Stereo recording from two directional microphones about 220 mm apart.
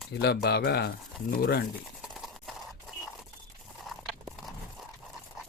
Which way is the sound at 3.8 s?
Centre (ahead or behind).